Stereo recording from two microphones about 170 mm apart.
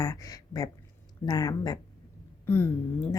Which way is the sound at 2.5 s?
15° left (ahead or behind).